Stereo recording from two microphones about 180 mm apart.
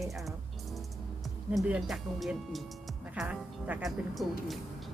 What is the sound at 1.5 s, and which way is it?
A woman's voice, centre (ahead or behind).